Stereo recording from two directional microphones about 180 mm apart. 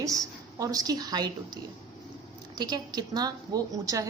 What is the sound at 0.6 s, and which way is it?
A woman's voice, 20° right (ahead or behind).